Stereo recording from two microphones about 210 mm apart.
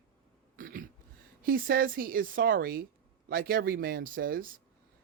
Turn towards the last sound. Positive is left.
turn(degrees=-45)  # may be behind; listen again after turning